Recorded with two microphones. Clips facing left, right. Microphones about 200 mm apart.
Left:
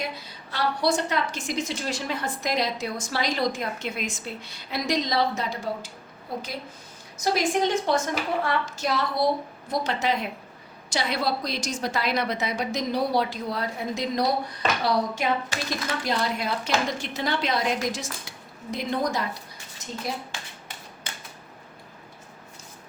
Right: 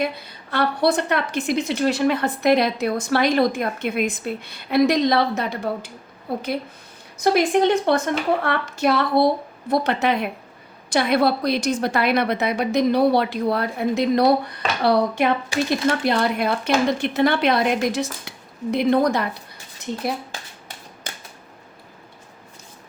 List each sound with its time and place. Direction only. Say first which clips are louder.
0.0 s a woman's voice: right 8 dB; 55° right (ahead or behind)